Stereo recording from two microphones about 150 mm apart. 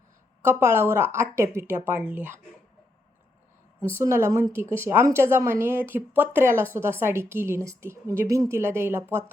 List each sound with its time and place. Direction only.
0.4 s a woman's voice: 15° right (ahead or behind)
3.9 s a woman's voice: 15° right (ahead or behind)